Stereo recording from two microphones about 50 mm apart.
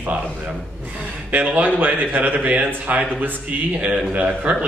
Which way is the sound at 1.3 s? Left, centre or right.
Right.